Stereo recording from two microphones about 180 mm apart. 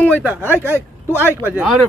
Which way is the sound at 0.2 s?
10° right (ahead or behind).